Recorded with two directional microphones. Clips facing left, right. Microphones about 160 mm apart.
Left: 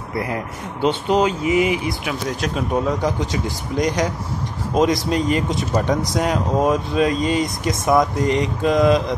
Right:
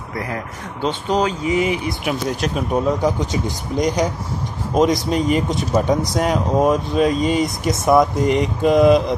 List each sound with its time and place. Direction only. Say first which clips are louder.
0.8 s speech: left 2 dB; 10° left (ahead or behind)
1.4 s speech: left 1 dB; 35° right (ahead or behind)
1.9 s speech: right 2 dB; 5° right (ahead or behind)